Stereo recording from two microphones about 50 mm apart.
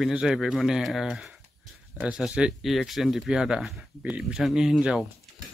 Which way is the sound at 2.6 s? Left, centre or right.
Centre.